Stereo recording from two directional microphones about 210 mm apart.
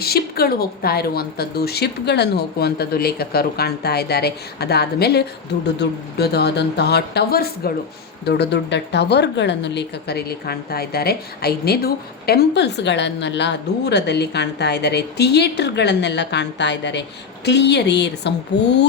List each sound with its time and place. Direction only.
0.0 s a woman's voice: 45° left (ahead or behind)